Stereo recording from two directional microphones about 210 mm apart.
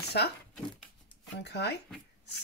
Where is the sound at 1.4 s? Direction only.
55° left (ahead or behind).